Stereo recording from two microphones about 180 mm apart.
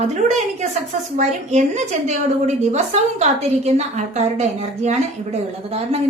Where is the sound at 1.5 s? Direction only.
40° right (ahead or behind).